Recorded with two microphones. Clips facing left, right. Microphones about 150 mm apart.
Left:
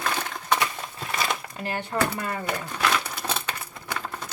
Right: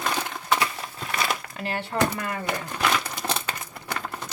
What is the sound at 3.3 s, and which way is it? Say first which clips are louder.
Crumpling: right 2 dB; 10° right (ahead or behind).